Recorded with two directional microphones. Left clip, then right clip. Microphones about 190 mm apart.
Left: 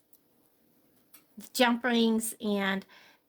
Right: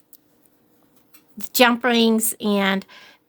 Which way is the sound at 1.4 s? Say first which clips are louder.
Right 10 dB; 35° right (ahead or behind).